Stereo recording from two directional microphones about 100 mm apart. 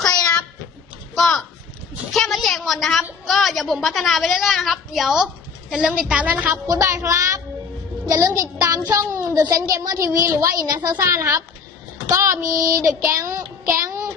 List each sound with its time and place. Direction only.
0.0 s a sound: 5° left (ahead or behind)
1.1 s a woman's voice: centre (ahead or behind); by 6.5 s 15° right (ahead or behind)
6.5 s child singing: 30° right (ahead or behind)